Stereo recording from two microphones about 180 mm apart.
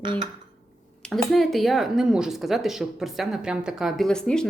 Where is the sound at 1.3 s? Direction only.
Centre (ahead or behind).